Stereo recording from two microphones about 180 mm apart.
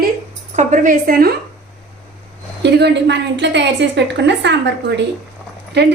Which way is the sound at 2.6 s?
70° right (ahead or behind).